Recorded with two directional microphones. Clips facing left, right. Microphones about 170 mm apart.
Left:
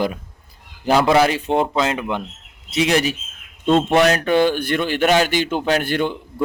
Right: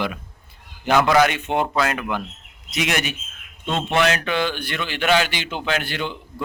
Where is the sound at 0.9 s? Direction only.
30° left (ahead or behind).